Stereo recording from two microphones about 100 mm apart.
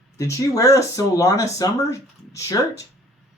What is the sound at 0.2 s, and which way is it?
Speech, 30° left (ahead or behind).